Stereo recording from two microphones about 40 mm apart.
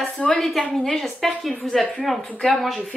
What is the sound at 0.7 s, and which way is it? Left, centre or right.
A woman's voice, centre.